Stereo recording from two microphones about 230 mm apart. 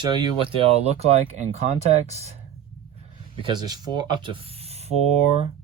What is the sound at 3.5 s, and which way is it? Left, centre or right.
Speech, centre.